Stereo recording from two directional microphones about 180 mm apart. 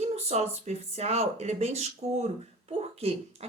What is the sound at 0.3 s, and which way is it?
A woman's voice, 35° right (ahead or behind).